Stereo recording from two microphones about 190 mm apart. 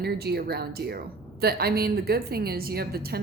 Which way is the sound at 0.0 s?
55° right (ahead or behind).